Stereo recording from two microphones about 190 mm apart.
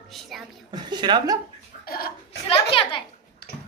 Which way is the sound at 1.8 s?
50° left (ahead or behind).